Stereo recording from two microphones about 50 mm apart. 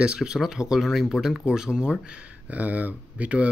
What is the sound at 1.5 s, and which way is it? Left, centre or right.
Speech, centre.